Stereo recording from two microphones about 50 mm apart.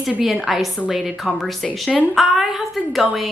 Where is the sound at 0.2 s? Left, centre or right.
Centre.